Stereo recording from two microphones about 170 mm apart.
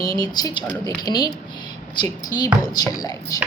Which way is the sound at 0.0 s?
20° left (ahead or behind).